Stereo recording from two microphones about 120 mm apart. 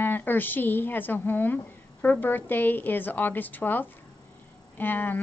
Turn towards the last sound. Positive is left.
turn(degrees=15)  # may be behind; listen again after turning